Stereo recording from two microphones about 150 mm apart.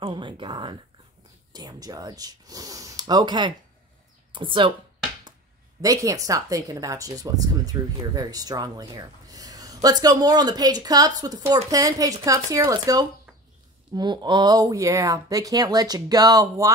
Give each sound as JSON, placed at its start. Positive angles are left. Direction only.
{"t": 0.0, "sound": "a sound", "side_deg": -35}
{"t": 1.5, "sound": "speech", "side_deg": -25}
{"t": 5.8, "sound": "speech", "side_deg": -20}